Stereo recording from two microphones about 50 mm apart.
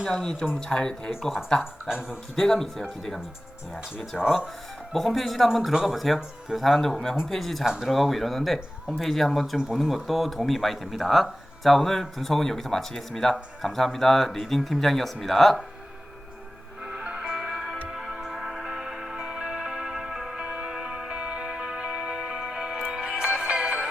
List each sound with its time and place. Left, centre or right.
0.1 s speech: centre
1.9 s speech: centre
2.3 s speech: centre
4.1 s speech: centre
7.6 s speech: centre
7.9 s speech: centre
16.9 s music: right